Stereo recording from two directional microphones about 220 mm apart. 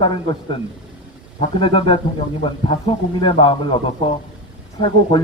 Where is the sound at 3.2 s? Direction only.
25° left (ahead or behind).